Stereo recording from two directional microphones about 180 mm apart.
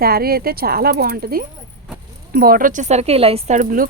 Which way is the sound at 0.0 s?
60° right (ahead or behind).